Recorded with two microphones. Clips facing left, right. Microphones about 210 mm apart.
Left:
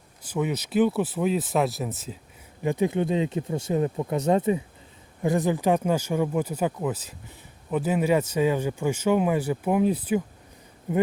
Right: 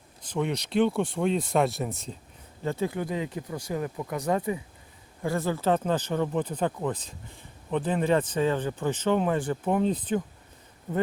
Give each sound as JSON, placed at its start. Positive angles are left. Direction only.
{"t": 0.2, "sound": "speech", "side_deg": 5}
{"t": 2.6, "sound": "speech", "side_deg": 20}